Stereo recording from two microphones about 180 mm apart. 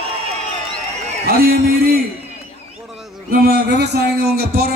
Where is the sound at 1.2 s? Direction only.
55° right (ahead or behind).